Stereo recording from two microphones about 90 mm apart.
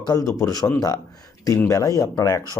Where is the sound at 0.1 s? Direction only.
40° left (ahead or behind).